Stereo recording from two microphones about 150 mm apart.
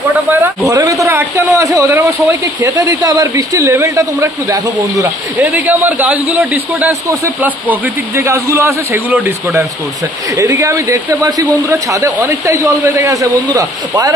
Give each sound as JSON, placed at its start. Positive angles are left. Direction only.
{"t": 0.3, "sound": "a man's voice", "side_deg": -20}
{"t": 10.3, "sound": "a man's voice", "side_deg": -20}